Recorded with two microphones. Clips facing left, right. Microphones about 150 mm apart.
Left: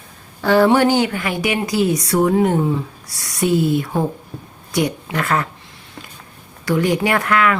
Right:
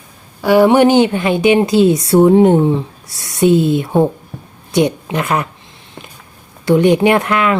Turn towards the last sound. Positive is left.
turn(degrees=-20)  # may be behind; listen again after turning